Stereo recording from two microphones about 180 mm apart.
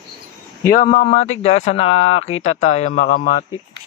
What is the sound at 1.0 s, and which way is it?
Mantra, 35° left (ahead or behind).